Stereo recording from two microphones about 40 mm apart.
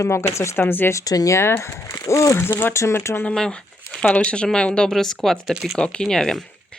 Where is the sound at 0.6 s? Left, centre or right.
Left.